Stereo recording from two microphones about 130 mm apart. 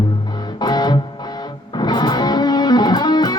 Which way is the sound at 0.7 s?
30° left (ahead or behind).